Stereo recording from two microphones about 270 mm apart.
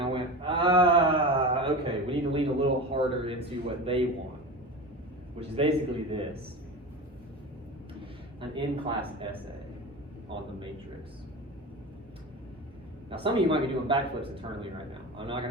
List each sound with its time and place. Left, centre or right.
0.0 s a sound: centre
3.9 s a man's voice: right
5.5 s a man's voice: right
8.4 s a man's voice: centre
13.1 s a man's voice: centre